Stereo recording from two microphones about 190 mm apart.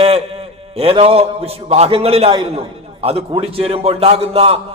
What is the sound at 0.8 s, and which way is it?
A man's voice, 30° right (ahead or behind).